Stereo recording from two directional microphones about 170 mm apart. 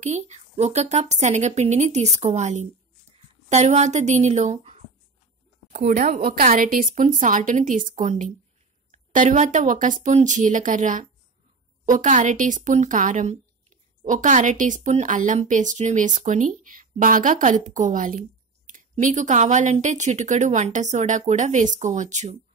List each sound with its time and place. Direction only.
0.0 s a woman's voice: 40° right (ahead or behind)